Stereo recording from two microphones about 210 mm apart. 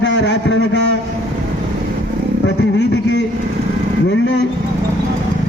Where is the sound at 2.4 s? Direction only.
55° left (ahead or behind).